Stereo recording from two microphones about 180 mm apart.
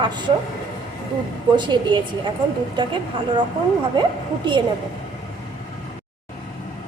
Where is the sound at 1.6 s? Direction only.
25° right (ahead or behind).